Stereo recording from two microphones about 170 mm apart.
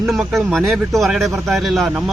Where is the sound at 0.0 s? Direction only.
Centre (ahead or behind).